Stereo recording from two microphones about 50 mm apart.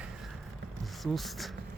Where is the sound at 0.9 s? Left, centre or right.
Centre.